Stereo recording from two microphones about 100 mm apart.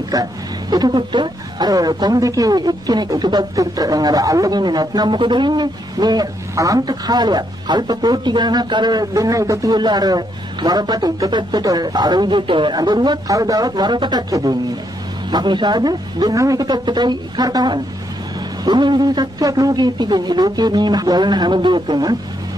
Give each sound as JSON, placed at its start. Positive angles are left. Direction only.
{"t": 0.1, "sound": "a woman's voice", "side_deg": -40}
{"t": 14.3, "sound": "a woman's voice", "side_deg": -40}
{"t": 15.2, "sound": "a woman's voice", "side_deg": -50}